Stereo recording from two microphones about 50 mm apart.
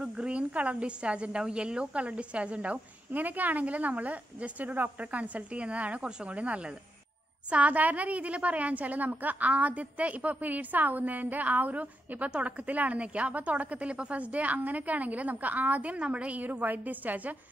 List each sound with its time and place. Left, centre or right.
0.0 s a woman's voice: right